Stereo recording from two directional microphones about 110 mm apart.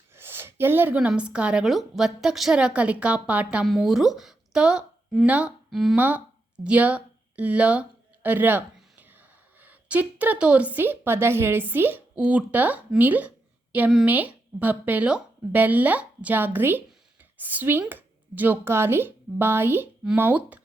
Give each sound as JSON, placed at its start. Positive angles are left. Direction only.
{"t": 0.2, "sound": "a woman's voice", "side_deg": -20}
{"t": 6.0, "sound": "a woman's voice", "side_deg": -15}